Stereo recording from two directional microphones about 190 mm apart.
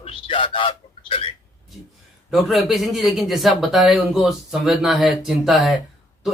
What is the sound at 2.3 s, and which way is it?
Speech, centre (ahead or behind).